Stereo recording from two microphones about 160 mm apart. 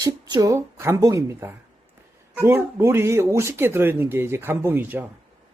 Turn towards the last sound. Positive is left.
turn(degrees=-10)  # may be behind; listen again after turning